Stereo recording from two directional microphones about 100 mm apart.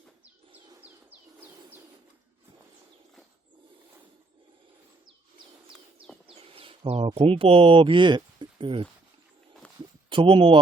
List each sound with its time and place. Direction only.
0.8 s bird: 15° right (ahead or behind)
6.2 s speech: 70° right (ahead or behind)
10.1 s speech: 55° right (ahead or behind)